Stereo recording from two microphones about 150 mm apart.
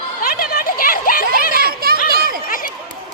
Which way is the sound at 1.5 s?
85° right.